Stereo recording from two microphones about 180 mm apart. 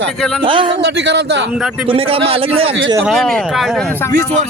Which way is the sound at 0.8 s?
75° right (ahead or behind).